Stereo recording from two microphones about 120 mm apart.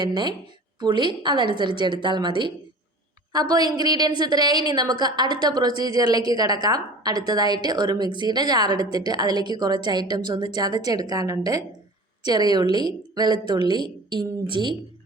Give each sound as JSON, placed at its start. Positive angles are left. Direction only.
{"t": 0.0, "sound": "a woman's voice", "side_deg": -40}